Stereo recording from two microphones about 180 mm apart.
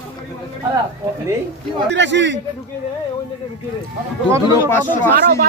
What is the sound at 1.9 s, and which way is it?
Speech, 85° right.